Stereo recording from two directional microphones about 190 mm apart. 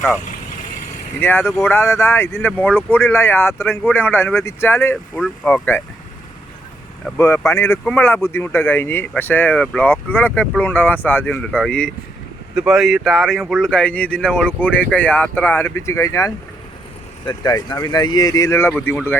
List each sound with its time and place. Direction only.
1.2 s speech: 10° left (ahead or behind)
7.2 s speech: 15° left (ahead or behind)